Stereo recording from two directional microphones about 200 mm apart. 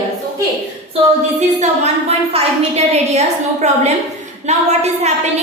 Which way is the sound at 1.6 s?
30° right (ahead or behind).